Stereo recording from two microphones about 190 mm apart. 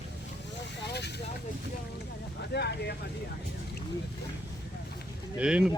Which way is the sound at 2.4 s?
60° left (ahead or behind).